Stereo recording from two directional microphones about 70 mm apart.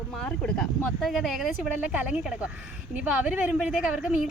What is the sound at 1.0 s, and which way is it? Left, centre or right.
Speech, centre.